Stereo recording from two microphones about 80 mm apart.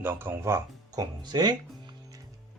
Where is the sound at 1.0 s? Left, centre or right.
Right.